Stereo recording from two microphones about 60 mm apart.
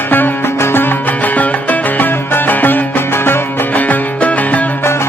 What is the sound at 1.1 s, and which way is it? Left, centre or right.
Music, left.